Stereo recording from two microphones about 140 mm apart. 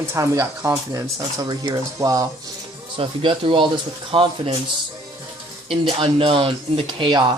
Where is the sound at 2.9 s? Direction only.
40° right (ahead or behind).